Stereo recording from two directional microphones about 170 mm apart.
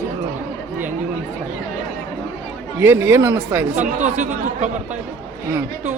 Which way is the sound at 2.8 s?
15° right (ahead or behind).